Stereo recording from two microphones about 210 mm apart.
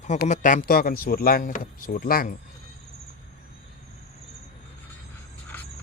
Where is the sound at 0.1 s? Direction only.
35° left (ahead or behind).